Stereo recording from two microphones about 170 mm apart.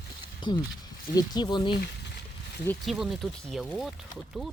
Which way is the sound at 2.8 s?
Centre (ahead or behind).